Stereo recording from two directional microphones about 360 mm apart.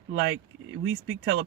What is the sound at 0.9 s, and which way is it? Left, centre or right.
Speech, right.